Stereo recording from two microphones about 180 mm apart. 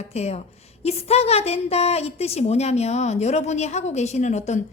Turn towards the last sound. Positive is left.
turn(degrees=40)  # may be behind; listen again after turning